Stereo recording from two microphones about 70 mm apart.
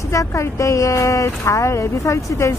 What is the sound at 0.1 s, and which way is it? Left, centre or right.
Speech, left.